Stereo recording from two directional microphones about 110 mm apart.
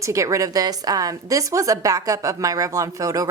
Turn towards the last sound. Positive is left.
turn(degrees=-30)  # may be behind; listen again after turning